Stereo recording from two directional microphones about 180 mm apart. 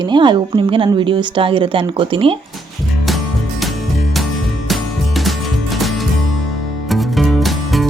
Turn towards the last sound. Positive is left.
turn(degrees=0)  # may be behind; listen again after turning